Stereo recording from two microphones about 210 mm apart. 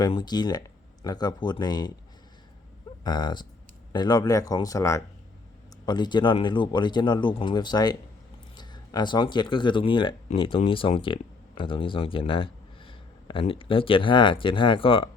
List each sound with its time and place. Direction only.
0.0 s speech: 20° left (ahead or behind)
3.0 s speech: 20° left (ahead or behind)